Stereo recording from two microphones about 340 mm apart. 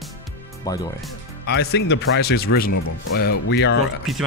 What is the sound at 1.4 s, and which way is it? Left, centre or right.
Speech, left.